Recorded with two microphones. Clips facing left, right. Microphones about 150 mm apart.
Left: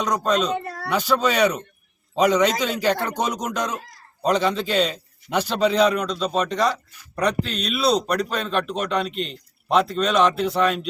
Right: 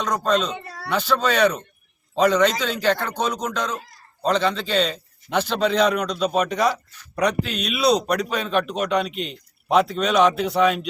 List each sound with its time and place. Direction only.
0.2 s speech: 5° left (ahead or behind)
0.5 s a sound: 55° left (ahead or behind)
0.9 s speech: 10° left (ahead or behind)